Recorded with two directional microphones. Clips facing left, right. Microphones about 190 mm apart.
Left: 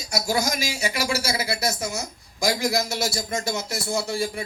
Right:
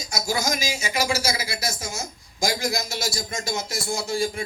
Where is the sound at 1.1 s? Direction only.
60° left (ahead or behind).